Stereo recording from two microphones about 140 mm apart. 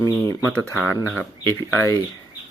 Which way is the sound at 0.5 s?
5° left (ahead or behind).